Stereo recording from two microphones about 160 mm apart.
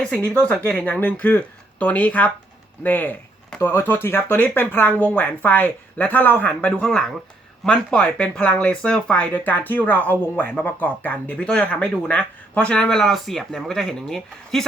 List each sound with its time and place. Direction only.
0.3 s speech: 10° left (ahead or behind)